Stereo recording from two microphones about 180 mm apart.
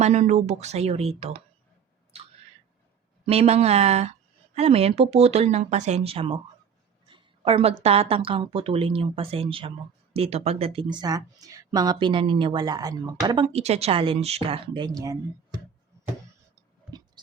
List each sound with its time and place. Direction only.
0.0 s speech: 40° right (ahead or behind)
2.1 s a sound: 35° right (ahead or behind)
3.2 s a woman's voice: 35° right (ahead or behind); by 15.2 s 20° right (ahead or behind)